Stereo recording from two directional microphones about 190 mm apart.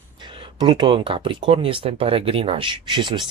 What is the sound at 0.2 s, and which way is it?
Speech, 25° right (ahead or behind).